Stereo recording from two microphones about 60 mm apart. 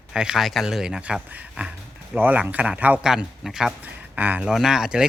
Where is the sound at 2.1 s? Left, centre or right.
Right.